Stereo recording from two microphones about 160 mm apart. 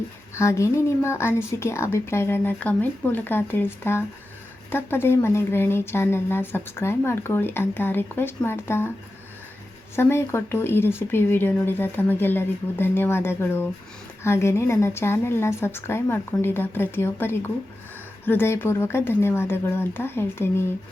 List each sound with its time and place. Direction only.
0.3 s speech: 20° left (ahead or behind)
9.9 s speech: 15° left (ahead or behind)